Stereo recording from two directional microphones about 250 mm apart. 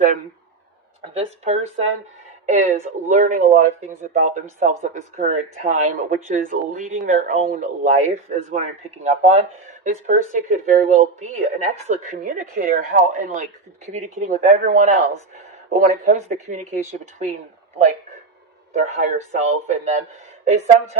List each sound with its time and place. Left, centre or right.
1.1 s a woman's voice: right
18.7 s a woman's voice: right